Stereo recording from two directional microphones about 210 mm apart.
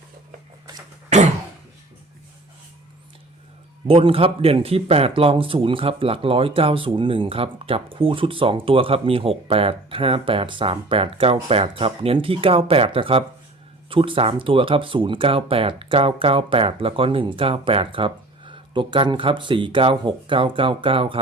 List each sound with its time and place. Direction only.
3.8 s a man's voice: 25° right (ahead or behind)